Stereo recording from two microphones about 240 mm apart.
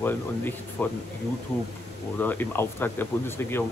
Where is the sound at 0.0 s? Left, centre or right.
Centre.